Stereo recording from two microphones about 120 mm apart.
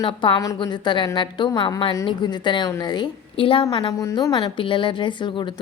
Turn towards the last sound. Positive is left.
turn(degrees=40)  # may be behind; listen again after turning